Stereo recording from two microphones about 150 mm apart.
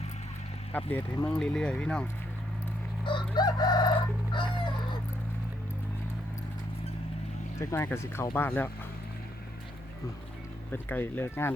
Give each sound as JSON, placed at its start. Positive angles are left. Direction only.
{"t": 0.7, "sound": "speech", "side_deg": 10}
{"t": 3.0, "sound": "crowing", "side_deg": 30}
{"t": 7.6, "sound": "speech", "side_deg": 15}
{"t": 10.7, "sound": "speech", "side_deg": 10}